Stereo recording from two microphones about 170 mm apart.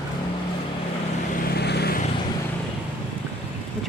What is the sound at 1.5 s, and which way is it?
Vehicle, 75° left (ahead or behind).